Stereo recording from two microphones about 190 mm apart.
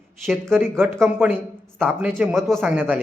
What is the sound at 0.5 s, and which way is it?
A man's voice, 10° right (ahead or behind).